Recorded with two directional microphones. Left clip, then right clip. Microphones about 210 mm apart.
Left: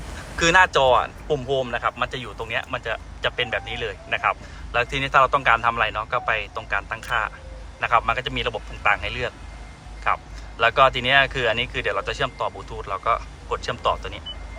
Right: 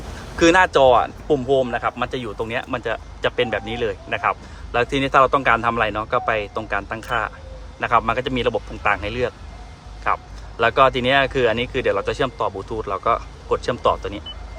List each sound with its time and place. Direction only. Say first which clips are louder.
0.3 s speech: right 2 dB; 25° right (ahead or behind)